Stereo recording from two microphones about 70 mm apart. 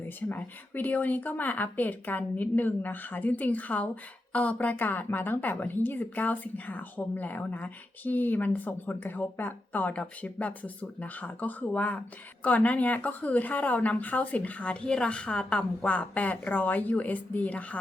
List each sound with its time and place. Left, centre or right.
0.0 s a woman's voice: left